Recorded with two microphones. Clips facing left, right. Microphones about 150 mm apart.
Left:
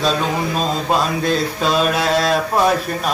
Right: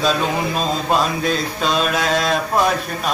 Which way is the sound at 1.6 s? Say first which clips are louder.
Left 1 dB; 5° left (ahead or behind).